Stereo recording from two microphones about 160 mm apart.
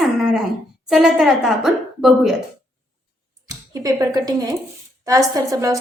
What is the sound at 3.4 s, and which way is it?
A woman's voice, 20° right (ahead or behind).